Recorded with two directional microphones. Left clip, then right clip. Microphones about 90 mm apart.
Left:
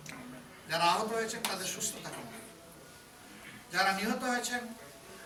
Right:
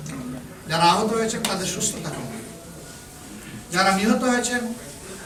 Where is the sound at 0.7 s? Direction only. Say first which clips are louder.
Right 10 dB; centre (ahead or behind).